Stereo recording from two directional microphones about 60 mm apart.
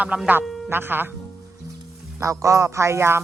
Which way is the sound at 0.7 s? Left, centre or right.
Right.